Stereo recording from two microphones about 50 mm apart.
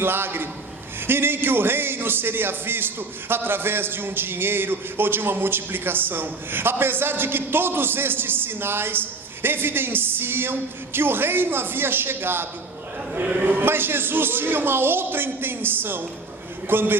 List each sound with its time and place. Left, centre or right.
0.0 s speech: right